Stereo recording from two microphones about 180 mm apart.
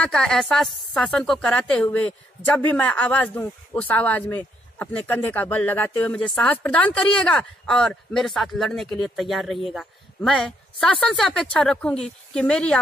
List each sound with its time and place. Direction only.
0.0 s speech: 5° left (ahead or behind)